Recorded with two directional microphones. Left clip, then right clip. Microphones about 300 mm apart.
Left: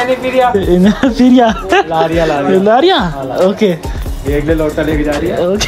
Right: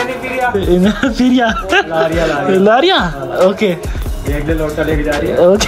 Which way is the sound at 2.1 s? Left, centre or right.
Centre.